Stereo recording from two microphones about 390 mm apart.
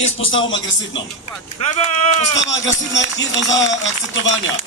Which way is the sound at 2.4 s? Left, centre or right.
Left.